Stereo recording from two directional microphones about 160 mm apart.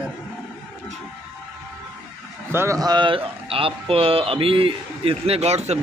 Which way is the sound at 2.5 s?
20° right (ahead or behind).